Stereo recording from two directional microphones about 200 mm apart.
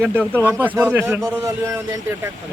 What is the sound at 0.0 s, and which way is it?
Speech, 10° right (ahead or behind).